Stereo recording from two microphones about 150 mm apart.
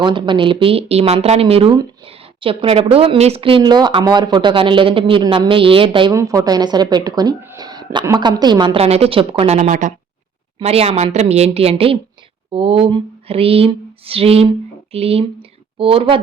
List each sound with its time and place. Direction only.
0.0 s speech: 30° right (ahead or behind)
6.1 s speech: 25° right (ahead or behind)
7.4 s a sound: 25° right (ahead or behind)
8.0 s speech: 25° right (ahead or behind)
9.6 s speech: 60° right (ahead or behind)
10.6 s a woman's voice: 40° right (ahead or behind)